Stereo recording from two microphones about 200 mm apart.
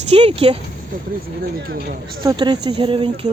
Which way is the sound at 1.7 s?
50° right (ahead or behind).